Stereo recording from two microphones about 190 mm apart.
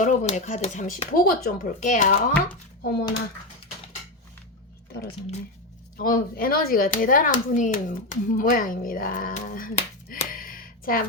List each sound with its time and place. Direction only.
0.0 s speech: 40° left (ahead or behind)
6.0 s speech: 50° left (ahead or behind)